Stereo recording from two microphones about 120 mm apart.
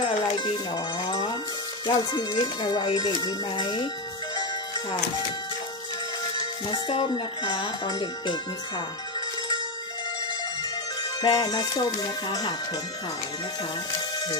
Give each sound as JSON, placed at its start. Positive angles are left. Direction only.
{"t": 0.0, "sound": "music", "side_deg": 45}
{"t": 1.9, "sound": "speech", "side_deg": 35}
{"t": 4.4, "sound": "music", "side_deg": 35}
{"t": 6.9, "sound": "speech", "side_deg": 45}
{"t": 11.1, "sound": "speech", "side_deg": 35}